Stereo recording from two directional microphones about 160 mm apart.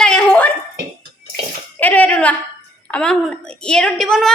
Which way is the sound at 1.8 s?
10° left (ahead or behind).